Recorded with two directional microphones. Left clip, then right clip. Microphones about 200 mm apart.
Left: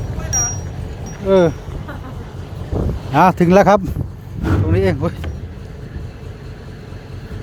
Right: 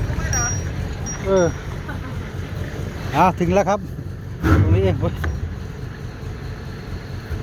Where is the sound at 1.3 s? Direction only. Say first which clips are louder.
Left 5 dB; 40° left (ahead or behind).